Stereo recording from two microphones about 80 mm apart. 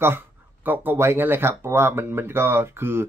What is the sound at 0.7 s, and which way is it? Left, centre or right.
Speech, right.